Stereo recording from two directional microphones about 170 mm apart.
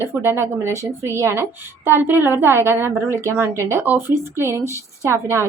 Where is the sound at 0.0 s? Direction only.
15° right (ahead or behind).